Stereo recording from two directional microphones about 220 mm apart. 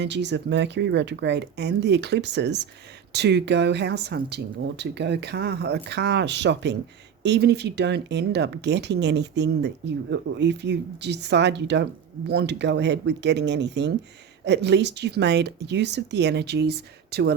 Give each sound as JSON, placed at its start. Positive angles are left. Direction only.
{"t": 0.0, "sound": "speech", "side_deg": -50}